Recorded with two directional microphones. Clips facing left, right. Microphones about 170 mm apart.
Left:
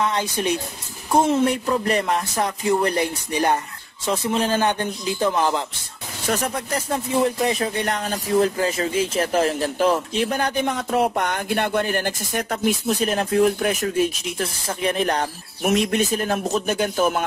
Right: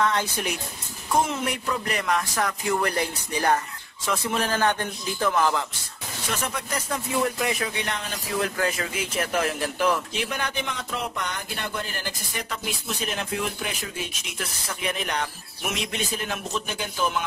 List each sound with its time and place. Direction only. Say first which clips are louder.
0.0 s a man's voice: left 2 dB; 15° left (ahead or behind)
6.2 s speech: left 7 dB; 40° left (ahead or behind)
7.7 s speech: left 7 dB; 45° left (ahead or behind)
8.4 s speech: left 6 dB; 25° left (ahead or behind); by 13.8 s 45° left (ahead or behind)
14.4 s speech: left 7 dB; 35° left (ahead or behind); by 17.2 s 50° left (ahead or behind)